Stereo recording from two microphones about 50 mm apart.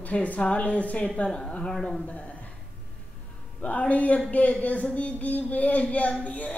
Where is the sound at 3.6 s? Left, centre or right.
Left.